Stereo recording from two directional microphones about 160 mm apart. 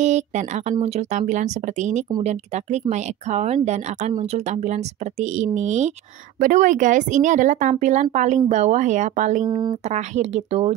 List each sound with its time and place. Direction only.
0.0 s speech: 45° right (ahead or behind)